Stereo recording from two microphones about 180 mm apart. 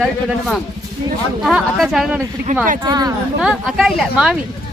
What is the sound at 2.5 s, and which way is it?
Speech, 45° right (ahead or behind).